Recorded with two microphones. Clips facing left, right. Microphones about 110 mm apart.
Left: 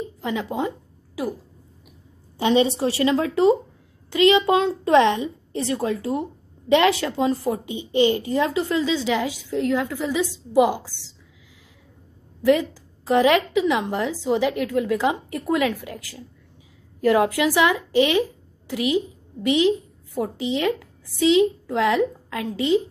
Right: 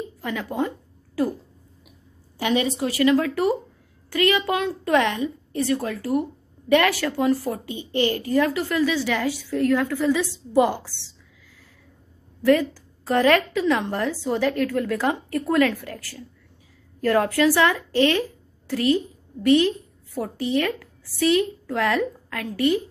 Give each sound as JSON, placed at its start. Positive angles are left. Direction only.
{"t": 0.2, "sound": "a sound", "side_deg": 20}
{"t": 2.3, "sound": "a woman's voice", "side_deg": 25}
{"t": 12.4, "sound": "a woman's voice", "side_deg": 15}